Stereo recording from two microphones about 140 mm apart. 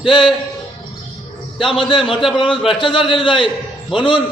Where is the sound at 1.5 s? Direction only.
35° left (ahead or behind).